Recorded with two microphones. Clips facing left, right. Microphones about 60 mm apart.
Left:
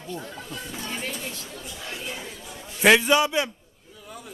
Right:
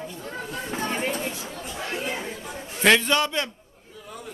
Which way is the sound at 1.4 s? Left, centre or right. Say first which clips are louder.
Right 5 dB; right.